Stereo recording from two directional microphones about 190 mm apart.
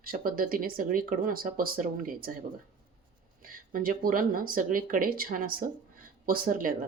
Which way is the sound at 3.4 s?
45° right (ahead or behind).